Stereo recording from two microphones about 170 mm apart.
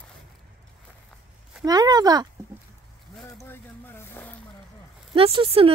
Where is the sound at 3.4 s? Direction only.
15° left (ahead or behind).